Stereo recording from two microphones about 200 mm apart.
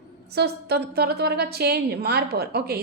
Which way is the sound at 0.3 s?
55° right (ahead or behind).